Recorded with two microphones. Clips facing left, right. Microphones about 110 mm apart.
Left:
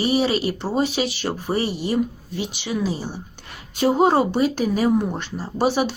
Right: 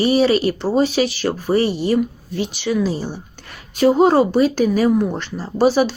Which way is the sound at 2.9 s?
65° right (ahead or behind).